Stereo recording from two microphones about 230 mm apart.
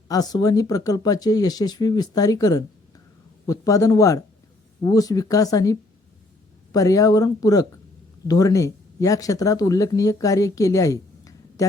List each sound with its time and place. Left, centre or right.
0.1 s speech: centre
6.7 s speech: centre